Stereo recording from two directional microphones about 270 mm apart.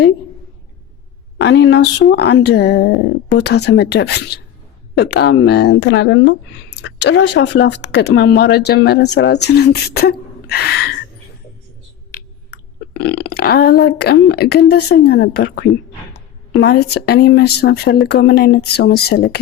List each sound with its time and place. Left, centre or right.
1.4 s speech: left
12.9 s speech: left